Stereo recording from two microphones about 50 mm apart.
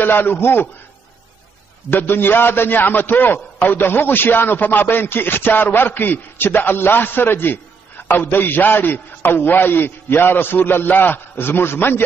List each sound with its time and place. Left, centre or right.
0.0 s a man's voice: left
1.9 s a man's voice: left